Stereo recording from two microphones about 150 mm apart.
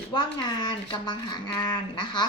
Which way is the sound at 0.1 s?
30° left (ahead or behind).